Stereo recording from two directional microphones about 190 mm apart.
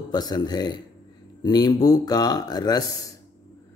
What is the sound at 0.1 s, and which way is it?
Speech, 20° left (ahead or behind).